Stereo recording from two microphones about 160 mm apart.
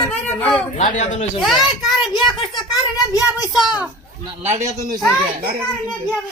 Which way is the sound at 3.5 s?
Centre (ahead or behind).